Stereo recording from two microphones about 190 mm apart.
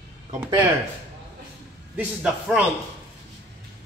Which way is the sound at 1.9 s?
5° right (ahead or behind).